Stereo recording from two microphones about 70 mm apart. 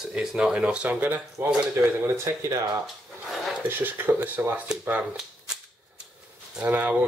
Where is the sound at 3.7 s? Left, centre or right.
Right.